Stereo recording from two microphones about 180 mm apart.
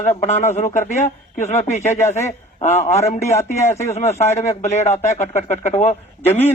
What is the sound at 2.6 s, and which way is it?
Speech, 40° left (ahead or behind).